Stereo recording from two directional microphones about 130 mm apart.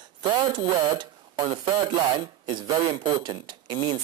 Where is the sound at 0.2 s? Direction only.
35° right (ahead or behind).